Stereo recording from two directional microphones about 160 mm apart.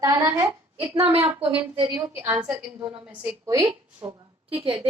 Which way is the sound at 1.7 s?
30° right (ahead or behind).